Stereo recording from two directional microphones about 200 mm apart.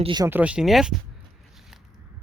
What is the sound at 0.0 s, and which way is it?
Speech, 20° right (ahead or behind).